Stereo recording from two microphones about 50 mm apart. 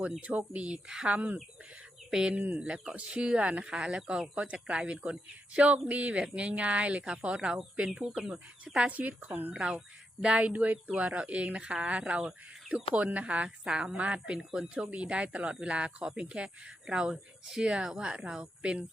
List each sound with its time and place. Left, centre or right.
0.2 s speech: right
2.0 s speech: centre
4.4 s speech: right
9.6 s speech: right
13.7 s speech: centre
14.8 s speech: right